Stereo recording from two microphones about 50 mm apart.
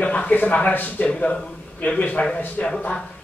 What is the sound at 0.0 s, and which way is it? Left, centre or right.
Speech, left.